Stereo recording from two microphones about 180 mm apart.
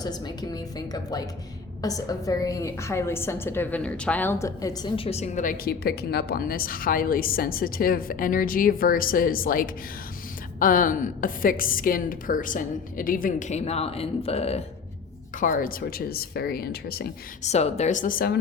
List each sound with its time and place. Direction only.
0.0 s a woman's voice: 20° left (ahead or behind)
15.4 s speech: 50° left (ahead or behind)
17.4 s a woman's voice: 35° left (ahead or behind); by 18.3 s 55° left (ahead or behind)